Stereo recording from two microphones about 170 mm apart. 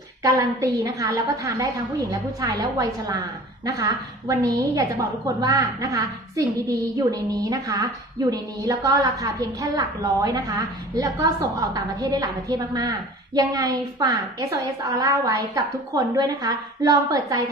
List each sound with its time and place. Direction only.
0.2 s a woman's voice: 20° right (ahead or behind)
4.3 s a woman's voice: 20° right (ahead or behind)